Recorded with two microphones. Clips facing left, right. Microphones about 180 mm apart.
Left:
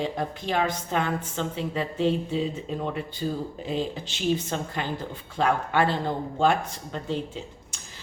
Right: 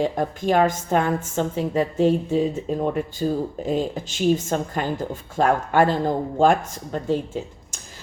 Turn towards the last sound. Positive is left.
turn(degrees=-45)  # may be behind; listen again after turning